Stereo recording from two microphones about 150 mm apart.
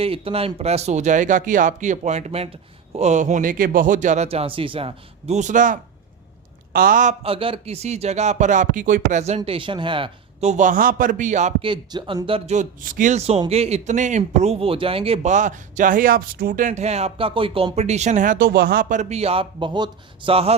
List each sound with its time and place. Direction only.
0.0 s speech: 40° right (ahead or behind)
10.5 s a man's voice: 60° right (ahead or behind)
11.6 s speech: 30° right (ahead or behind)
12.5 s speech: 65° right (ahead or behind); by 20.6 s 40° right (ahead or behind)